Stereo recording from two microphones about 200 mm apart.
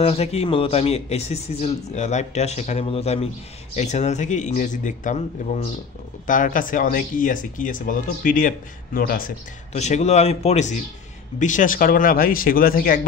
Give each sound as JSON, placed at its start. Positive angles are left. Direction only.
{"t": 0.0, "sound": "speech", "side_deg": 30}